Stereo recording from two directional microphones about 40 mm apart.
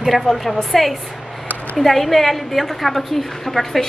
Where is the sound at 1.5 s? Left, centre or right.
Left.